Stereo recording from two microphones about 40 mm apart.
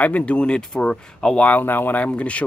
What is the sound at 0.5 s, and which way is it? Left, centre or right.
Speech, centre.